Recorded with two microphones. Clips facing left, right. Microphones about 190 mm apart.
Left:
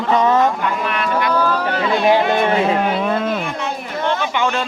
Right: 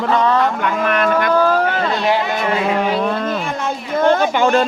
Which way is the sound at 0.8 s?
50° right (ahead or behind).